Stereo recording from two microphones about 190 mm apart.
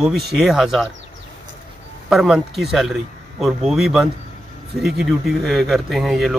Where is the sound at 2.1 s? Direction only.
Centre (ahead or behind).